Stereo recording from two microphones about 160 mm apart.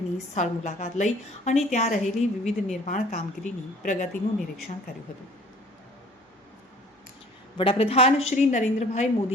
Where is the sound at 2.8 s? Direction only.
45° left (ahead or behind).